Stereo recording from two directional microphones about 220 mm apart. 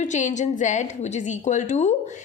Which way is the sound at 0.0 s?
35° left (ahead or behind).